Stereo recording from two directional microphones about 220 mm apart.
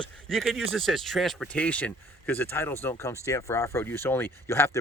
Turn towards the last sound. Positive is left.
turn(degrees=10)  # may be behind; listen again after turning